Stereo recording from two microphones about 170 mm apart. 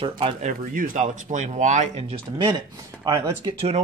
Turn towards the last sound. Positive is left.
turn(degrees=-40)  # may be behind; listen again after turning